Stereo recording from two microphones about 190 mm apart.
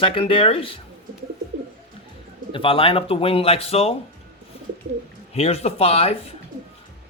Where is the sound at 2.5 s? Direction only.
30° left (ahead or behind).